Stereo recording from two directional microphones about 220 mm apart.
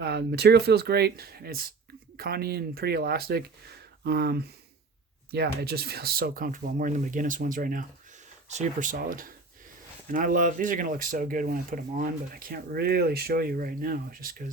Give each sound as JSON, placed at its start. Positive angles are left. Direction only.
{"t": 0.0, "sound": "speech", "side_deg": -50}